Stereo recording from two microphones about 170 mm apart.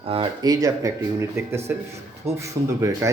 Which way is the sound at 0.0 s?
30° right (ahead or behind).